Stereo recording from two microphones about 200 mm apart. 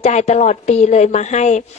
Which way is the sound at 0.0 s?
35° left (ahead or behind).